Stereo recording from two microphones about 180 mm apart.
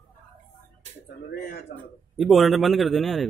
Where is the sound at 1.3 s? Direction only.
55° left (ahead or behind).